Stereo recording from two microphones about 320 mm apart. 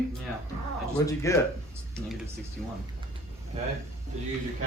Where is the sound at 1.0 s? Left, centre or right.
Centre.